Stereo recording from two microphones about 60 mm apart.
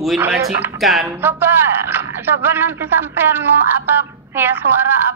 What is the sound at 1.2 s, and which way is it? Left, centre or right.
Speech, right.